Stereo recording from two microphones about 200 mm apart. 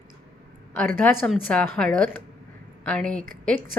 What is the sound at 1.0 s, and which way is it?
Speech, 5° left (ahead or behind).